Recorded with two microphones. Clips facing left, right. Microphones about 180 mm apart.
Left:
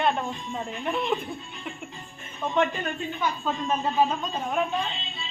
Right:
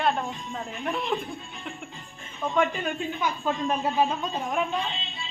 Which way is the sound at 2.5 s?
5° right (ahead or behind).